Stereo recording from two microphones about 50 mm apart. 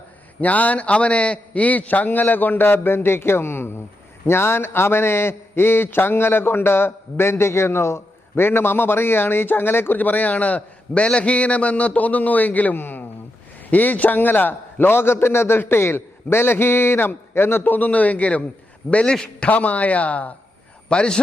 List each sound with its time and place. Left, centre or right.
0.4 s a man's voice: left
17.6 s a man's voice: left; by 19.5 s centre
19.5 s speech: left